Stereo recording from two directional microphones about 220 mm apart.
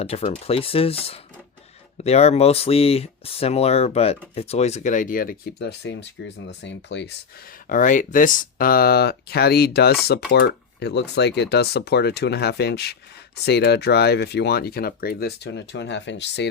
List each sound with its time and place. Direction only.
0.0 s speech: 25° left (ahead or behind); by 7.1 s 55° left (ahead or behind)
7.7 s speech: 35° left (ahead or behind)